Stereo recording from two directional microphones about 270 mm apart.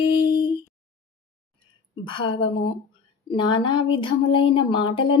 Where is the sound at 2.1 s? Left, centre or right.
Centre.